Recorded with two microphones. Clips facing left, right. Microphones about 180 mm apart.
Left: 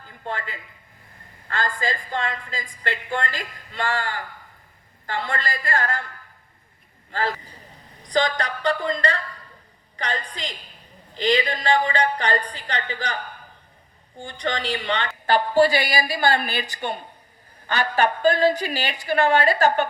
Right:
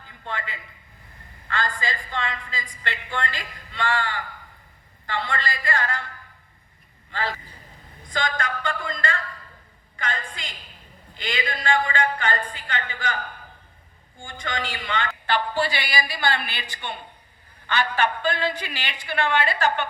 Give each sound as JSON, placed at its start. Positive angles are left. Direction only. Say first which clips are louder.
{"t": 0.1, "sound": "a man's voice", "louder": "left 2 dB", "side_deg": 40}
{"t": 7.1, "sound": "speech", "louder": "left 3 dB", "side_deg": 40}
{"t": 14.3, "sound": "speech", "louder": "left 5 dB", "side_deg": 35}